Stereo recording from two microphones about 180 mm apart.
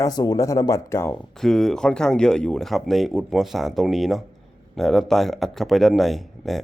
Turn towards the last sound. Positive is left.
turn(degrees=0)  # may be behind; listen again after turning